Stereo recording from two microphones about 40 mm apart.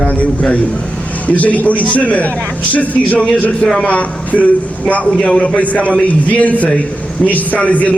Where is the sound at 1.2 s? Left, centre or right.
Left.